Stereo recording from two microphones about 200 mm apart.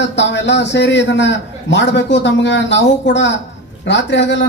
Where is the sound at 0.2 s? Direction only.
60° left (ahead or behind).